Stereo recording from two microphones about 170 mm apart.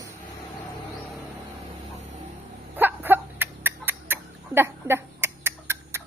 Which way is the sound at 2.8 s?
10° right (ahead or behind).